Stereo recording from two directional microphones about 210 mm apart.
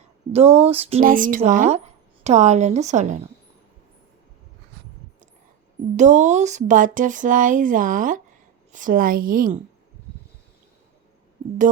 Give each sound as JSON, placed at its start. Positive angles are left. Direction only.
{"t": 0.3, "sound": "speech", "side_deg": -30}
{"t": 1.0, "sound": "speech", "side_deg": -40}
{"t": 6.0, "sound": "speech", "side_deg": -35}